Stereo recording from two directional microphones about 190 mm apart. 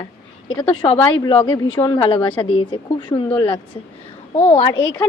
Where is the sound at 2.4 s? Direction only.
25° left (ahead or behind).